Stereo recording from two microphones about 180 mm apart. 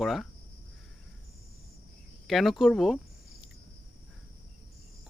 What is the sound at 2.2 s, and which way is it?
Speech, centre (ahead or behind).